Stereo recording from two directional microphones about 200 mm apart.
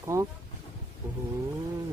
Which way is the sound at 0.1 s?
15° right (ahead or behind).